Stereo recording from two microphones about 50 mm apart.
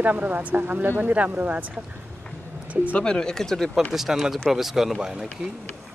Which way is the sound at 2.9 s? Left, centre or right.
Centre.